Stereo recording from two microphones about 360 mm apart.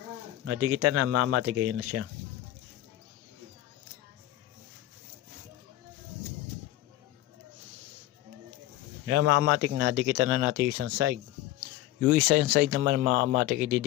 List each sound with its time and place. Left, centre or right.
0.4 s speech: right
9.0 s speech: right